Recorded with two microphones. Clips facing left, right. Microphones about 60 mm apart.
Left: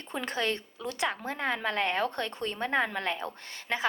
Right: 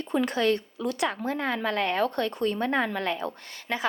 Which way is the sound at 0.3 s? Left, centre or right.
Left.